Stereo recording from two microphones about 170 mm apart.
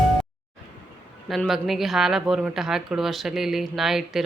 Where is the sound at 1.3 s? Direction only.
Centre (ahead or behind).